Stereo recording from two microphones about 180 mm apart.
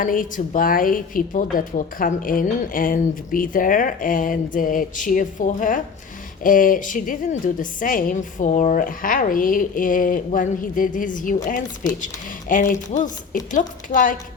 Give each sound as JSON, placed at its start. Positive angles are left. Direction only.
{"t": 0.0, "sound": "a woman's voice", "side_deg": 50}